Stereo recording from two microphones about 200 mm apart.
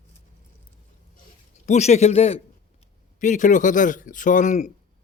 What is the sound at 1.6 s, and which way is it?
Speech, 35° left (ahead or behind).